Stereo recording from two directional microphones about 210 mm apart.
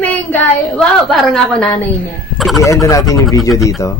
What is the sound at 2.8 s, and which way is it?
Speech, 15° left (ahead or behind).